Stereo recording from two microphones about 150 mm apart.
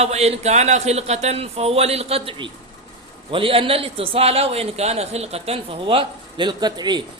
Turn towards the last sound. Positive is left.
turn(degrees=-30)  # may be behind; listen again after turning